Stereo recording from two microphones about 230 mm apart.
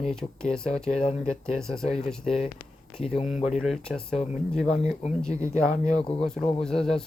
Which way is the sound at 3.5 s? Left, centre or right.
Centre.